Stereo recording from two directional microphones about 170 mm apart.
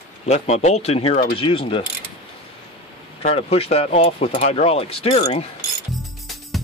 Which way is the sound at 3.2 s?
35° left (ahead or behind).